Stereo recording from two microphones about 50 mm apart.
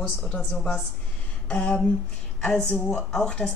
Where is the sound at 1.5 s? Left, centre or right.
Left.